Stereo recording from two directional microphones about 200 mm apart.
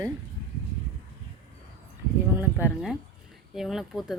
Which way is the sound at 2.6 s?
Centre (ahead or behind).